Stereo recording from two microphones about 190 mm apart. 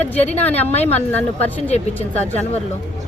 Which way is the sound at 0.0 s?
10° left (ahead or behind).